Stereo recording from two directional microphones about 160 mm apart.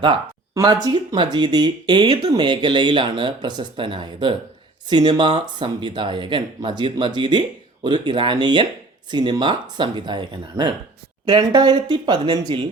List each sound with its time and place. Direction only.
0.0 s speech: 25° right (ahead or behind)